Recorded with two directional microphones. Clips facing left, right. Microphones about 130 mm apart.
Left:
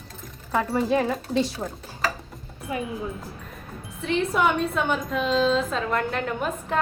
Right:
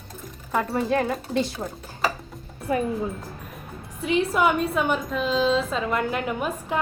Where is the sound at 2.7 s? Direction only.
40° right (ahead or behind).